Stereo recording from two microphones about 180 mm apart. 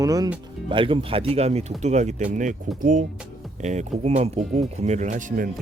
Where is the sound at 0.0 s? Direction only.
20° right (ahead or behind).